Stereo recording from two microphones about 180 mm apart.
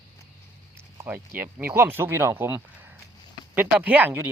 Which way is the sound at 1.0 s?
10° right (ahead or behind).